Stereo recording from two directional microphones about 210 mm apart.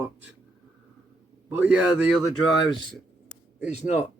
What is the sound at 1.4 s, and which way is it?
Speech, 10° right (ahead or behind).